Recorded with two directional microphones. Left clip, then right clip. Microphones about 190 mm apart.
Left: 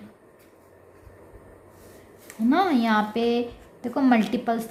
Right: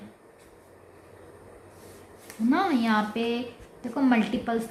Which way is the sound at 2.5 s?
35° left (ahead or behind).